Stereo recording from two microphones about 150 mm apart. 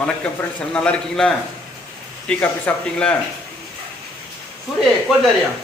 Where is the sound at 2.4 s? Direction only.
10° left (ahead or behind).